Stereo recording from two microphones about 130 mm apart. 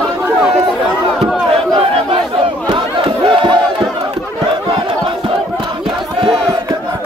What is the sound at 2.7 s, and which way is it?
Crowd, 40° right (ahead or behind).